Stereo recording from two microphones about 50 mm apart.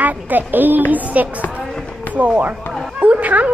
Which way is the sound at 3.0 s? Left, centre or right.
Right.